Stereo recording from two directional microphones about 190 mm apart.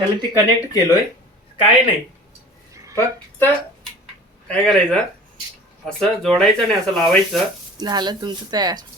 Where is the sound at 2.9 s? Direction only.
10° left (ahead or behind).